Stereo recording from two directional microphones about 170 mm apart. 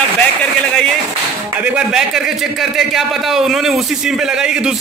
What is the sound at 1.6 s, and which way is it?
A man's voice, 5° right (ahead or behind).